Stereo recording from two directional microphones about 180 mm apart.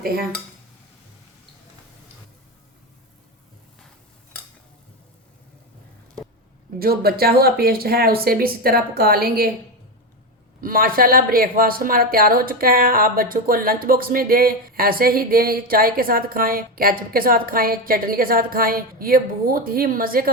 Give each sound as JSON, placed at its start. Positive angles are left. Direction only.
{"t": 0.0, "sound": "speech", "side_deg": -55}
{"t": 6.7, "sound": "speech", "side_deg": -55}
{"t": 10.6, "sound": "speech", "side_deg": -50}